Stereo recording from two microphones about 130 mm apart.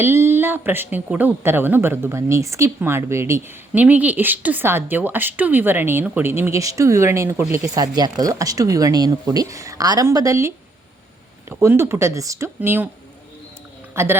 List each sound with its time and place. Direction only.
0.0 s speech: 20° right (ahead or behind)
13.9 s speech: 20° right (ahead or behind)